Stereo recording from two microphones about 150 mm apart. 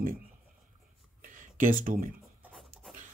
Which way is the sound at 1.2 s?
60° right (ahead or behind).